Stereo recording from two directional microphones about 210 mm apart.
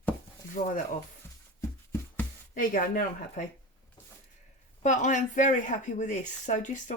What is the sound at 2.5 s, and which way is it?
Speech, 40° left (ahead or behind).